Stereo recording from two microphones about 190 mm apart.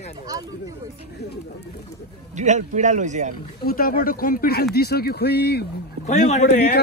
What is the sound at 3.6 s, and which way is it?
A man's voice, 50° left (ahead or behind).